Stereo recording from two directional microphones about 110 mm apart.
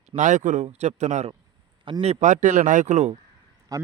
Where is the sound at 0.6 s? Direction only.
80° right.